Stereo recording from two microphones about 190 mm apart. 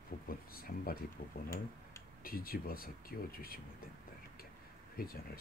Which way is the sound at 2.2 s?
50° left (ahead or behind).